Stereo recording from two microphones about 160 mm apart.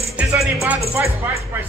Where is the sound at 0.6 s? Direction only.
15° right (ahead or behind).